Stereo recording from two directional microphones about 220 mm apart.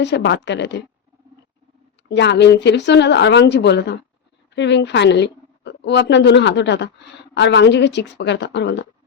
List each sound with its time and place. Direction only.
0.0 s speech: 50° left (ahead or behind)
2.0 s a woman's voice: 50° left (ahead or behind)